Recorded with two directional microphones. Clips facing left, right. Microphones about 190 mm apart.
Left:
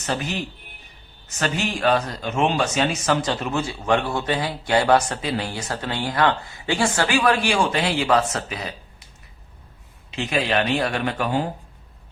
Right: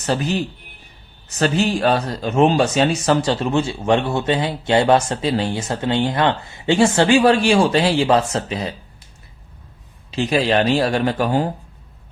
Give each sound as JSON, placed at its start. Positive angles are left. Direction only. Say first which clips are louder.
{"t": 0.0, "sound": "a man's voice", "louder": "right 6 dB", "side_deg": -35}
{"t": 10.1, "sound": "a man's voice", "louder": "right 5 dB", "side_deg": -35}